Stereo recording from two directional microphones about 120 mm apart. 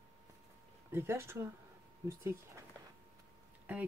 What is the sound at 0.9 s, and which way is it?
Speech, 20° right (ahead or behind).